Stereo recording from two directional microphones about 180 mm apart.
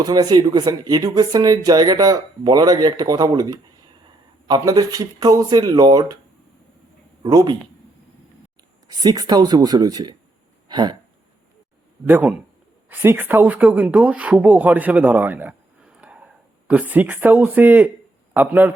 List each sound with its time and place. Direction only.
0.0 s speech: 20° right (ahead or behind)
7.2 s speech: 25° right (ahead or behind)
8.9 s speech: 20° right (ahead or behind)
10.7 s a sound: 25° right (ahead or behind)
12.0 s a man's voice: 10° right (ahead or behind)